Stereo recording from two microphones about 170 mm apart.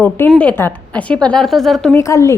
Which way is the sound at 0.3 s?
5° left (ahead or behind).